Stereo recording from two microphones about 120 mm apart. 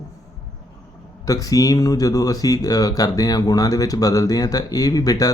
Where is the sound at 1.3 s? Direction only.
30° left (ahead or behind).